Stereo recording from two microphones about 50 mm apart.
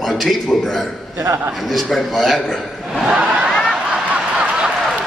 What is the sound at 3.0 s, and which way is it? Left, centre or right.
Crowd, right.